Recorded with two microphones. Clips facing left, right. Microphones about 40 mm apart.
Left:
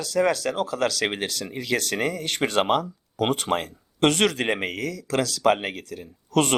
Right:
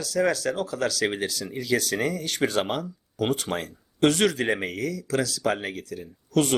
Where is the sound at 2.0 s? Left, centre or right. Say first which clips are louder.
Left 1 dB; left.